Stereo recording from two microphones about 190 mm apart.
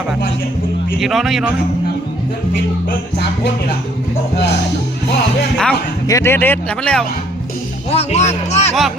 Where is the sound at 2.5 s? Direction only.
60° left (ahead or behind).